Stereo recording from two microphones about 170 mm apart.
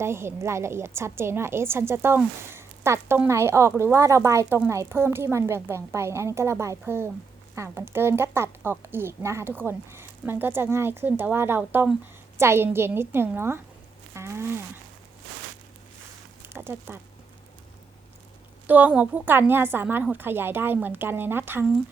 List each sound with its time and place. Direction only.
0.0 s a woman's voice: 15° right (ahead or behind)
14.1 s a sound: 15° right (ahead or behind)
16.4 s speech: 15° right (ahead or behind)
18.7 s a woman's voice: 10° right (ahead or behind)